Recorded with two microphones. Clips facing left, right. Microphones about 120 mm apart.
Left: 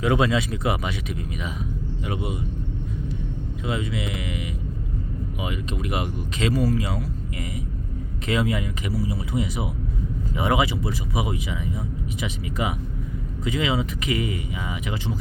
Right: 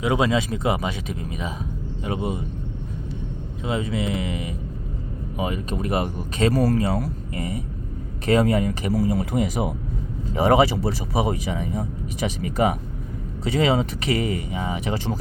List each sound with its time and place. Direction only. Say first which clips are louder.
0.0 s speech: even; 20° right (ahead or behind)
0.3 s speech: right 2 dB; 30° right (ahead or behind)
3.7 s speech: right 4 dB; 35° right (ahead or behind)
6.5 s speech: right 1 dB; 60° right (ahead or behind)
6.7 s speech: right 4 dB; 45° right (ahead or behind)
10.3 s speech: right 6 dB; 35° right (ahead or behind)